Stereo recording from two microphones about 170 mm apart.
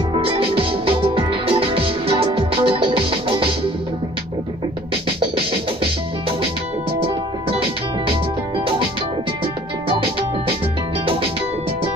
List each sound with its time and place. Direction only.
0.1 s music: 35° right (ahead or behind)
7.0 s music: 35° right (ahead or behind)